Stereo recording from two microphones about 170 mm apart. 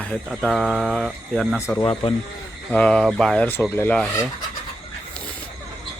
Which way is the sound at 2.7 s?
5° left (ahead or behind).